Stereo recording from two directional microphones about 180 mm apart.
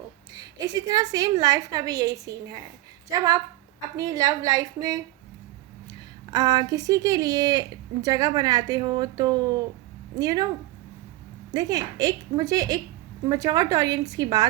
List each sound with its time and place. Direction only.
0.3 s a woman's voice: 20° right (ahead or behind)
11.5 s a woman's voice: 20° right (ahead or behind)